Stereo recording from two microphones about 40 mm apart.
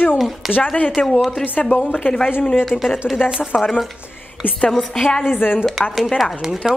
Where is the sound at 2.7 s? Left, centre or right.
Centre.